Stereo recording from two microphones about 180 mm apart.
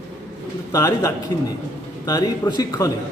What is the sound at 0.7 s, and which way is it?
A man's voice, 20° left (ahead or behind).